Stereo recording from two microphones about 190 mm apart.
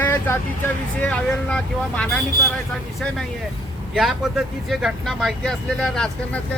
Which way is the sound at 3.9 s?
Centre (ahead or behind).